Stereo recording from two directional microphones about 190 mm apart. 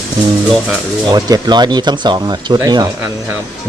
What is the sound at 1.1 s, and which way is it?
Speech, 20° right (ahead or behind).